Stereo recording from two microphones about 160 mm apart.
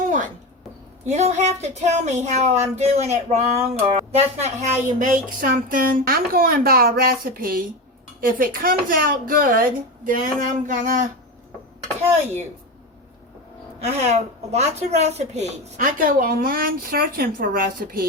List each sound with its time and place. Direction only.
0.0 s a sound: 50° right (ahead or behind)
1.0 s speech: 45° right (ahead or behind)
13.8 s speech: 45° right (ahead or behind)
16.0 s speech: 60° right (ahead or behind)